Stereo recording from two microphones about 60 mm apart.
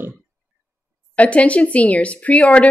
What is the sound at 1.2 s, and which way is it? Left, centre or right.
A woman's voice, left.